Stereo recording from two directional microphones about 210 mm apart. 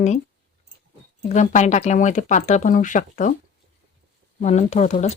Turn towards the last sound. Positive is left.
turn(degrees=30)  # may be behind; listen again after turning